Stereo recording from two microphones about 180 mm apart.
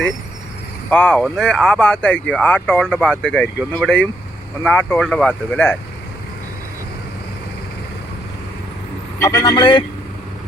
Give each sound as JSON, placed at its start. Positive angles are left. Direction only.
{"t": 0.9, "sound": "speech", "side_deg": 10}
{"t": 9.1, "sound": "speech", "side_deg": 15}